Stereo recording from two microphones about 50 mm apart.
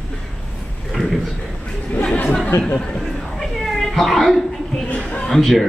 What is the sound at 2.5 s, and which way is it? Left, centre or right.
Speech, left.